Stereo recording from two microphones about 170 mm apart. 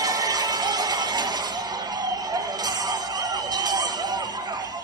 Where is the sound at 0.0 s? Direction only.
20° right (ahead or behind).